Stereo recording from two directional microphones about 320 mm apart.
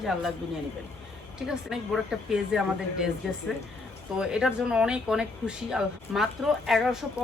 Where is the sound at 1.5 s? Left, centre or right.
Centre.